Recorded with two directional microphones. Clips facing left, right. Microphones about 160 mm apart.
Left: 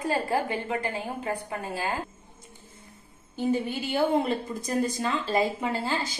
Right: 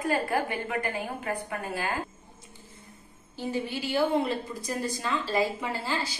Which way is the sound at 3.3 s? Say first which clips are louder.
Left 5 dB; 50° left (ahead or behind).